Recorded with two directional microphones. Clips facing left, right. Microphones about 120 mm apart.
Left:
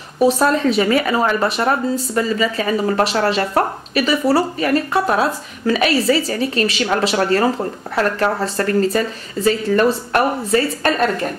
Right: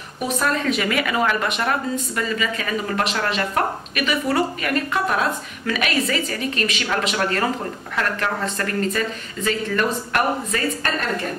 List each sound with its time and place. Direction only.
0.2 s a woman's voice: 30° left (ahead or behind)